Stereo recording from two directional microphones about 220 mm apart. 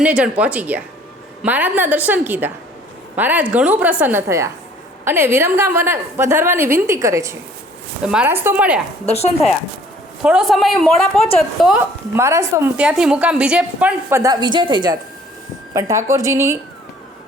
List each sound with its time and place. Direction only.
0.0 s a woman's voice: 5° right (ahead or behind)
9.1 s speech: 30° left (ahead or behind)
10.2 s a woman's voice: centre (ahead or behind)
12.1 s a woman's voice: 15° right (ahead or behind)